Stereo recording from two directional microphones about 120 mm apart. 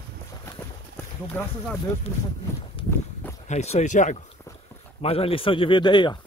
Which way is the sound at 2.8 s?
45° left (ahead or behind).